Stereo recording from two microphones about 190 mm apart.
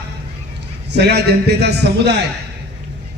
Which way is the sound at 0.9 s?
60° right (ahead or behind).